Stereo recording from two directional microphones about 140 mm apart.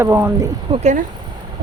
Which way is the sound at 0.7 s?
35° right (ahead or behind).